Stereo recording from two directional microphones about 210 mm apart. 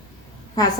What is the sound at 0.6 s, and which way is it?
Speech, 20° left (ahead or behind).